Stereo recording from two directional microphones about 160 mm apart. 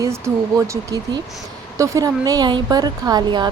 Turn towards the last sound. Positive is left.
turn(degrees=-25)  # may be behind; listen again after turning